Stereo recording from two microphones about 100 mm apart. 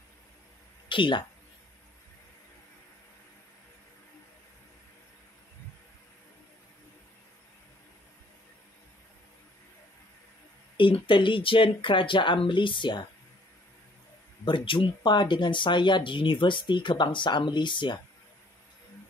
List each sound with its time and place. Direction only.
0.8 s speech: 55° left (ahead or behind)
10.8 s speech: 55° left (ahead or behind)
14.4 s speech: 55° left (ahead or behind)